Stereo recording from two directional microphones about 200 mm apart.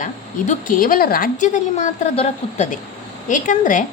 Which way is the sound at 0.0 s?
40° left (ahead or behind).